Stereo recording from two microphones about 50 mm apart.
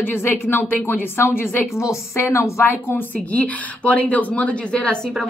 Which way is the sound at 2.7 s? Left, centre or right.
Left.